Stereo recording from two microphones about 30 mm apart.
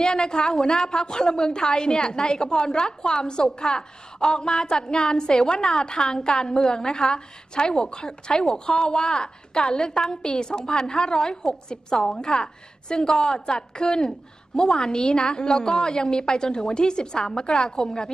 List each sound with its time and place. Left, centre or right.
0.1 s a woman's voice: left
0.4 s a woman's voice: centre
0.7 s a woman's voice: left
14.0 s a woman's voice: centre
14.9 s a woman's voice: left